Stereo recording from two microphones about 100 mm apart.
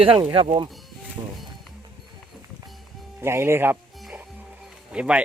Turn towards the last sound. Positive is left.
turn(degrees=-10)  # may be behind; listen again after turning